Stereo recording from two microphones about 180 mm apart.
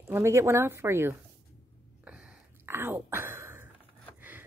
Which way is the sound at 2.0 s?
5° right (ahead or behind).